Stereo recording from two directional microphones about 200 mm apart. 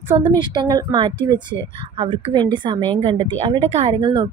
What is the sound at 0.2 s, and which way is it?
A woman's voice, 20° right (ahead or behind).